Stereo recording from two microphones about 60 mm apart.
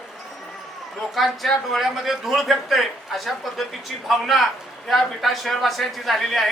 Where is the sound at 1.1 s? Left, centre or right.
Centre.